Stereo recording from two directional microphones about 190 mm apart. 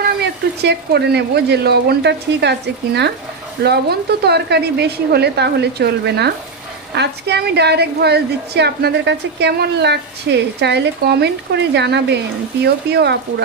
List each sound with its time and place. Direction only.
0.0 s a woman's voice: 60° right (ahead or behind)